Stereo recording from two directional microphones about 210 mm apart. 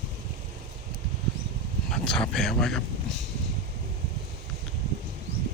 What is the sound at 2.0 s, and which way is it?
Speech, centre (ahead or behind).